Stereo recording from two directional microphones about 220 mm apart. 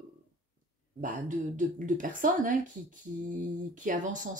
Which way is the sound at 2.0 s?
35° right (ahead or behind).